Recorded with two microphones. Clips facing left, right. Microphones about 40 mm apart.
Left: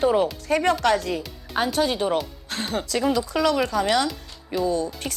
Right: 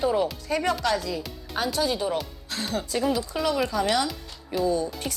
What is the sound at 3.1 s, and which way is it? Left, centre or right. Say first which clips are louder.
Speech: left 4 dB; left.